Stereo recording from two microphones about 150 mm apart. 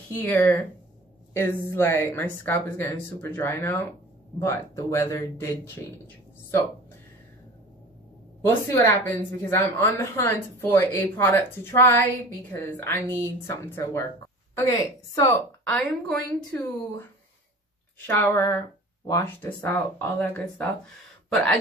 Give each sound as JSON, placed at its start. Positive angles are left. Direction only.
{"t": 0.1, "sound": "a woman's voice", "side_deg": 10}
{"t": 8.6, "sound": "a woman's voice", "side_deg": 15}
{"t": 15.6, "sound": "a woman's voice", "side_deg": 5}
{"t": 16.5, "sound": "a woman's voice", "side_deg": 15}
{"t": 18.0, "sound": "a woman's voice", "side_deg": 15}